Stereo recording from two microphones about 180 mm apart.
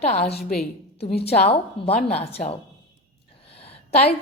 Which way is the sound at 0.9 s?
35° left (ahead or behind).